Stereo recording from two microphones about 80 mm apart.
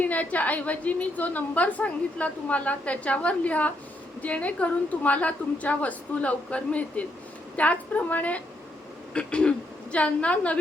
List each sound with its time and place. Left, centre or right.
0.0 s a woman's voice: centre